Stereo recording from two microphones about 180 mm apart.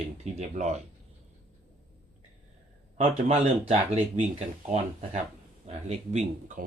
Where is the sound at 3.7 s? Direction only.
35° right (ahead or behind).